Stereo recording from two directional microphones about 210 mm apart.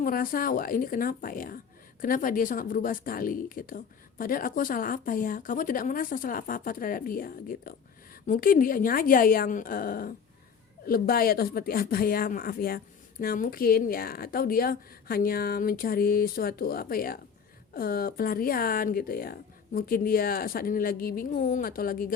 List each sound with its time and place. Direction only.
0.0 s speech: 40° left (ahead or behind)